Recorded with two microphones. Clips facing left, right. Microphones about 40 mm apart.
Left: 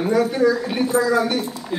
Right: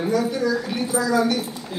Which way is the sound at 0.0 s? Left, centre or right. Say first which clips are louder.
Left 4 dB; left.